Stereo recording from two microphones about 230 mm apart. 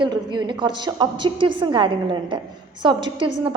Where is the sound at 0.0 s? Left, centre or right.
Centre.